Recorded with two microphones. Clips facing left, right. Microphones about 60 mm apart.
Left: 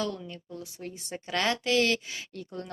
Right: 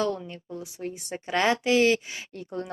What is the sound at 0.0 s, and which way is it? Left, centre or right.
A woman's voice, right.